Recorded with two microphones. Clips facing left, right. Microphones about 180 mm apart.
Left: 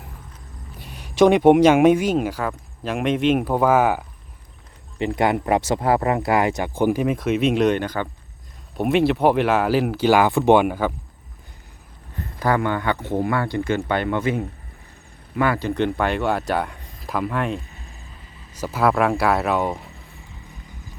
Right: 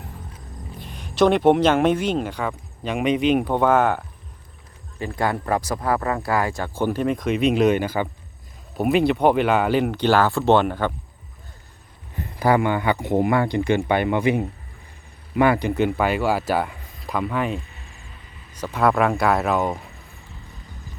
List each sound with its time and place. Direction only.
0.8 s speech: 10° left (ahead or behind)
4.9 s speech: 20° left (ahead or behind)
12.1 s speech: 10° right (ahead or behind)
15.7 s speech: 5° right (ahead or behind)